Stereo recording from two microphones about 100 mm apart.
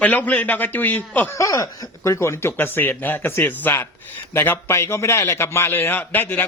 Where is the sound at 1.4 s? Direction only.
30° left (ahead or behind).